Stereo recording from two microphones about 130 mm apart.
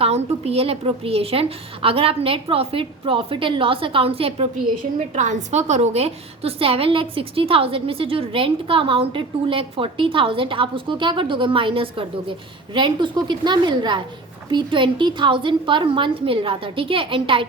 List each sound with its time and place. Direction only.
0.0 s a woman's voice: 50° right (ahead or behind)
4.8 s a woman's voice: 65° right (ahead or behind); by 17.4 s 40° right (ahead or behind)